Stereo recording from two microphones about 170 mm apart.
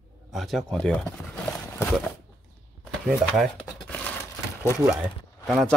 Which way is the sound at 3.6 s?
10° left (ahead or behind).